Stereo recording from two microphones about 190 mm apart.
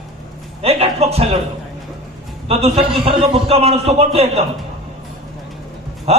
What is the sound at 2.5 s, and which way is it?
A man's voice, 30° right (ahead or behind).